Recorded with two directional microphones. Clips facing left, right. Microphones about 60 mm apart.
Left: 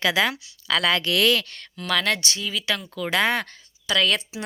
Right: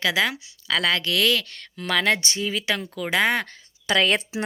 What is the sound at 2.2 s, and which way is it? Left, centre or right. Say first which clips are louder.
Speech: right 2 dB; right.